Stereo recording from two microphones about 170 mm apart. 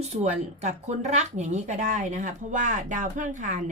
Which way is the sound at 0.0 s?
40° right (ahead or behind).